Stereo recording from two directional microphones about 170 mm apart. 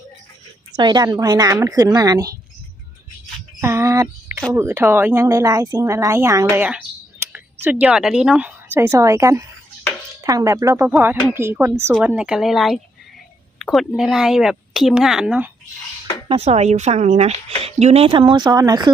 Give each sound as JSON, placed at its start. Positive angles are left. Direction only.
{"t": 0.8, "sound": "a woman's voice", "side_deg": -25}
{"t": 3.6, "sound": "a sound", "side_deg": -15}
{"t": 4.5, "sound": "a woman's voice", "side_deg": -15}
{"t": 16.3, "sound": "speech", "side_deg": -40}